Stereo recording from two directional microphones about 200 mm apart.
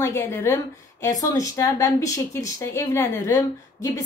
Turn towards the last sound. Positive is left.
turn(degrees=15)  # may be behind; listen again after turning